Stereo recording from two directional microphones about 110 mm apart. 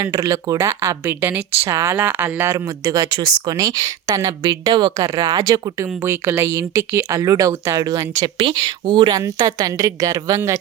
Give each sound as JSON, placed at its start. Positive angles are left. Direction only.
{"t": 0.0, "sound": "speech", "side_deg": -30}
{"t": 8.4, "sound": "speech", "side_deg": -45}